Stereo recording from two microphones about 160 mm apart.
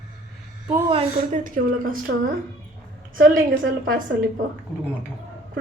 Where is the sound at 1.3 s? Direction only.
55° right (ahead or behind).